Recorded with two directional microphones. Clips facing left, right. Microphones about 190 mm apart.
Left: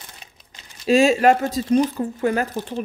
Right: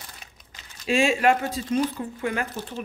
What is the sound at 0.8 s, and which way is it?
A woman's voice, 40° left (ahead or behind).